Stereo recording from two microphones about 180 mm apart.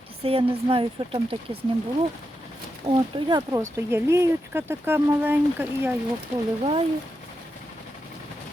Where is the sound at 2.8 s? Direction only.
35° right (ahead or behind).